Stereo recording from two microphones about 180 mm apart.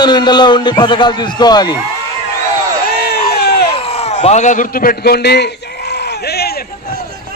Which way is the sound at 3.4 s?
60° left (ahead or behind).